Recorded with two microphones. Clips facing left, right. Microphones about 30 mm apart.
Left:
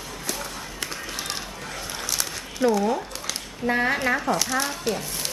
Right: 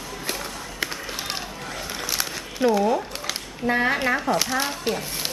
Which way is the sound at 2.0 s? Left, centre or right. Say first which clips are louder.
Right 2 dB; centre.